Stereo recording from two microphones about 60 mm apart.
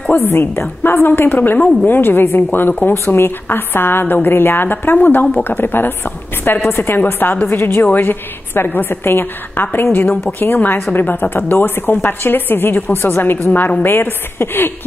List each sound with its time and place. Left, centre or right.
0.3 s a woman's voice: left
6.7 s a woman's voice: left
7.0 s a woman's voice: left